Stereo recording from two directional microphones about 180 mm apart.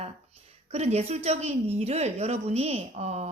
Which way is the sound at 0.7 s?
35° right (ahead or behind).